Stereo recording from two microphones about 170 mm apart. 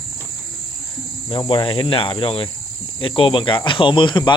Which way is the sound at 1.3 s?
30° left (ahead or behind).